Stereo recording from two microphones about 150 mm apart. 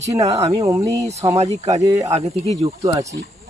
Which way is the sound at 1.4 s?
45° right (ahead or behind).